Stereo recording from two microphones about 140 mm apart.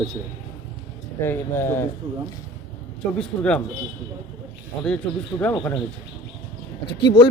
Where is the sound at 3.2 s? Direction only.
5° left (ahead or behind).